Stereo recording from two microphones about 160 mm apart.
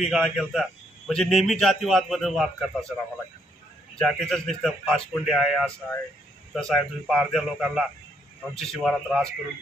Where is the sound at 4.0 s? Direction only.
Centre (ahead or behind).